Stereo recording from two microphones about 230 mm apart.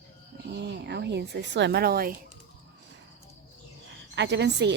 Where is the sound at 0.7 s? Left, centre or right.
Right.